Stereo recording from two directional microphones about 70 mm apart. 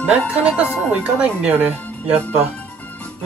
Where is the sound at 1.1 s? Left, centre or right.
Centre.